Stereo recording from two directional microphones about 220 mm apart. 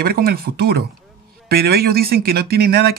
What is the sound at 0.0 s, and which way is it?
Speech, 45° right (ahead or behind).